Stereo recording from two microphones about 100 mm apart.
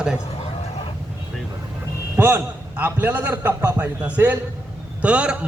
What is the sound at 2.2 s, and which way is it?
Speech, 20° right (ahead or behind).